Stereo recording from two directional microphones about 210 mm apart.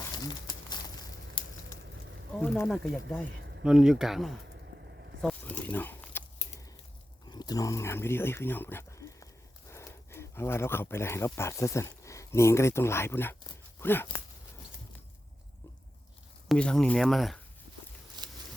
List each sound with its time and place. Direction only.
0.3 s crumpling: 20° left (ahead or behind)
2.4 s speech: centre (ahead or behind)
5.2 s a sound: 5° left (ahead or behind)
7.3 s speech: 20° left (ahead or behind)
16.5 s speech: 5° left (ahead or behind)
18.2 s a sound: 20° right (ahead or behind)